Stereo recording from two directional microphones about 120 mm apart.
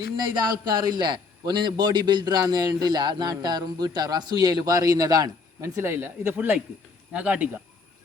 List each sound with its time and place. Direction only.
0.2 s a man's voice: 35° right (ahead or behind); by 7.5 s 10° right (ahead or behind)